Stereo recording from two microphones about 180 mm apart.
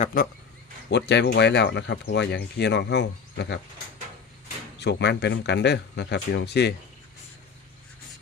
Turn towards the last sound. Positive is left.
turn(degrees=70)  # may be behind; listen again after turning